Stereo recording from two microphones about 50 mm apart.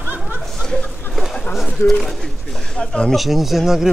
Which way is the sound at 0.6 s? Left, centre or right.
Centre.